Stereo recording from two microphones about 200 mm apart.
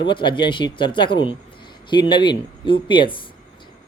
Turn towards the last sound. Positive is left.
turn(degrees=25)  # may be behind; listen again after turning